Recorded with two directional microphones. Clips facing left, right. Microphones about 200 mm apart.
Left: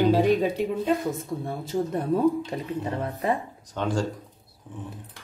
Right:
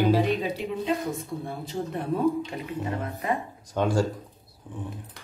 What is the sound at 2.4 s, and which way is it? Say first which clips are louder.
Speech: left 2 dB; 35° left (ahead or behind).